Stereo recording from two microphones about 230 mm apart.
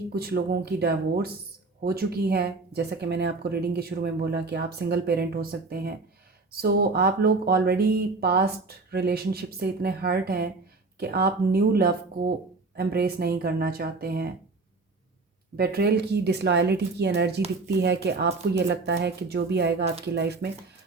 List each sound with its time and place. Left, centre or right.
0.1 s speech: right
15.5 s speech: right